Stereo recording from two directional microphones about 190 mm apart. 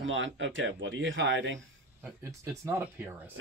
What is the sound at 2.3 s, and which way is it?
Speech, 15° right (ahead or behind).